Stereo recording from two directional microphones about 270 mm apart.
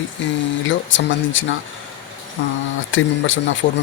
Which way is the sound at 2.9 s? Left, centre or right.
Left.